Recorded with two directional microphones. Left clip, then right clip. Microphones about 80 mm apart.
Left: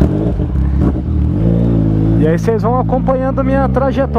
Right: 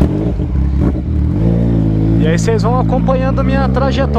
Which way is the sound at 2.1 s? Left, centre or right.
Left.